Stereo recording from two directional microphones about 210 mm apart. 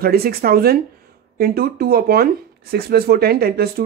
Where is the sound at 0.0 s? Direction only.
45° right (ahead or behind).